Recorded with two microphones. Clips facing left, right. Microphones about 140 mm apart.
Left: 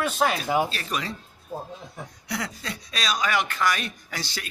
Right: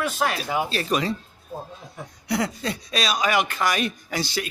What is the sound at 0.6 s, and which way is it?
Speech, 30° right (ahead or behind).